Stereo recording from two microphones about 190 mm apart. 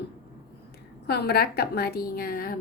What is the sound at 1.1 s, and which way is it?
A woman's voice, 55° left (ahead or behind).